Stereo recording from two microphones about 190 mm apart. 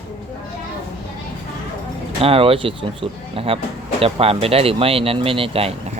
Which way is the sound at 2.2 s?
30° right (ahead or behind).